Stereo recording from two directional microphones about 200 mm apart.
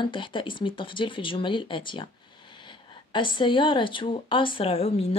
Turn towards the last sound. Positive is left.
turn(degrees=30)  # may be behind; listen again after turning